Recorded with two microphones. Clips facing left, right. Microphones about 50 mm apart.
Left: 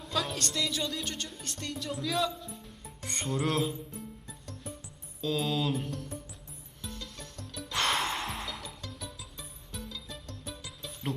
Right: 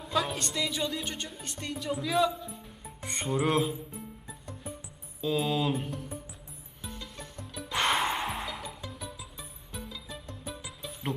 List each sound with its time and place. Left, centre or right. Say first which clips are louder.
0.0 s speech: right 3 dB; centre
3.6 s music: right 1 dB; centre
5.2 s speech: right 2 dB; centre
6.8 s music: right 1 dB; centre